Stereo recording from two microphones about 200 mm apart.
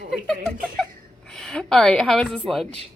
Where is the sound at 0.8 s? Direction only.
5° left (ahead or behind).